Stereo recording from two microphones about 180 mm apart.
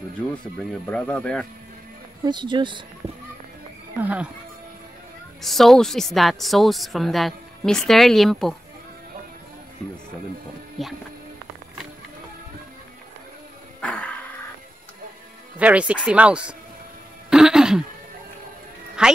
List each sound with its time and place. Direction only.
0.8 s a woman's voice: 5° left (ahead or behind)
2.2 s speech: 25° right (ahead or behind)
4.0 s speech: 5° right (ahead or behind)
5.4 s a woman's voice: centre (ahead or behind)
10.8 s a woman's voice: centre (ahead or behind)
13.7 s music: 5° left (ahead or behind)
15.6 s speech: 5° right (ahead or behind)
17.3 s a sound: 5° right (ahead or behind)
19.0 s speech: 5° right (ahead or behind)